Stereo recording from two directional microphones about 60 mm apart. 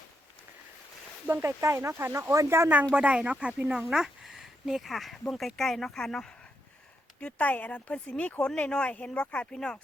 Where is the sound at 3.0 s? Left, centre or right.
Right; by 6.5 s centre.